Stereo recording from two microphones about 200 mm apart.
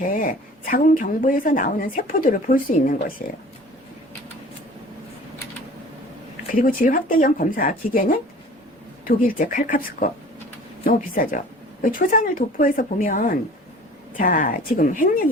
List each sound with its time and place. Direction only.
0.0 s a woman's voice: 40° left (ahead or behind)
6.5 s a woman's voice: 45° left (ahead or behind)